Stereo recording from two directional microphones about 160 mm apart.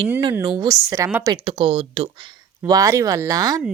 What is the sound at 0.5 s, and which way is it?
Speech, 20° right (ahead or behind).